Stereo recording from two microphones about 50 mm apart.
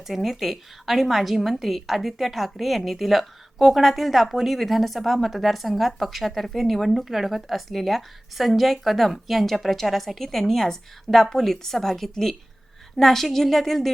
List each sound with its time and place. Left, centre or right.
0.1 s a woman's voice: centre